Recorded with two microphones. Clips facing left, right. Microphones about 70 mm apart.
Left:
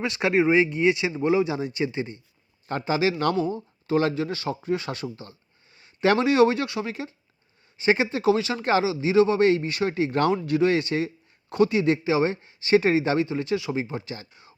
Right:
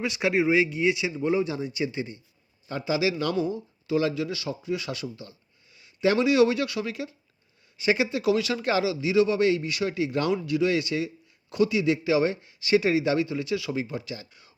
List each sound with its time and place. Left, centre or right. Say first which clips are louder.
0.2 s speech: left 3 dB; left
1.7 s speech: left 2 dB; left
2.6 s speech: left 2 dB; left
5.7 s a sound: left 3 dB; left
6.1 s speech: left 2 dB; left